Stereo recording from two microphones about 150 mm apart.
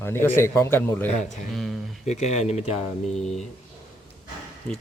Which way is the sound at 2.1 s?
50° left (ahead or behind).